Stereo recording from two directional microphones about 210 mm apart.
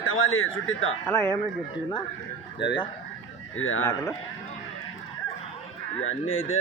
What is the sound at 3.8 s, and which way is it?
Speech, 10° left (ahead or behind).